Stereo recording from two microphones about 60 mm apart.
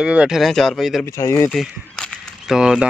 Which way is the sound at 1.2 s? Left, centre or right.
Left.